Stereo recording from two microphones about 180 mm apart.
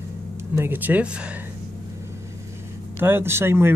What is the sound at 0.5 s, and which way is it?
Speech, 10° right (ahead or behind).